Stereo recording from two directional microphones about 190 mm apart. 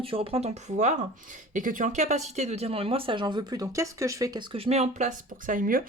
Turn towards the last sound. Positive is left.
turn(degrees=-45)  # may be behind; listen again after turning